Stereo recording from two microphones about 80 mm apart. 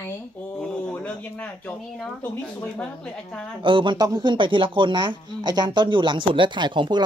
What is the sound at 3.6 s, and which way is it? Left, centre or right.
Speech, right.